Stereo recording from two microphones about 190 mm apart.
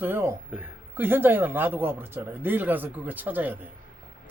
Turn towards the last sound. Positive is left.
turn(degrees=-10)  # may be behind; listen again after turning